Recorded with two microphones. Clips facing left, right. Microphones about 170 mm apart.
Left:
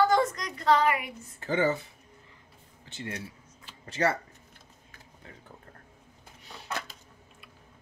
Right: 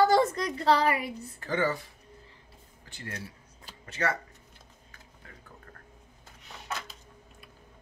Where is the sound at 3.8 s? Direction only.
30° left (ahead or behind).